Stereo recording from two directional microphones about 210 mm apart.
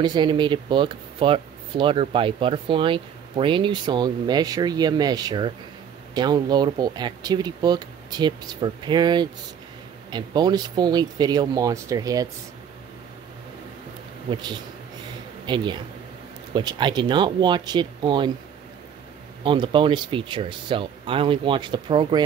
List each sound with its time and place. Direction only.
0.0 s speech: 20° right (ahead or behind)
14.3 s speech: 20° right (ahead or behind)
19.4 s speech: 20° right (ahead or behind)